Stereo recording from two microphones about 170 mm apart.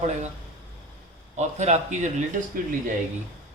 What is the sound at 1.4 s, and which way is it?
Speech, 45° right (ahead or behind).